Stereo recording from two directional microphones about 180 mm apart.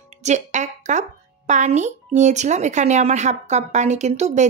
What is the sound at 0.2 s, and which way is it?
Speech, 40° right (ahead or behind).